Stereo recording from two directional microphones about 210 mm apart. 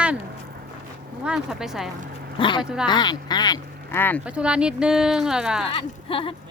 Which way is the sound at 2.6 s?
5° right (ahead or behind).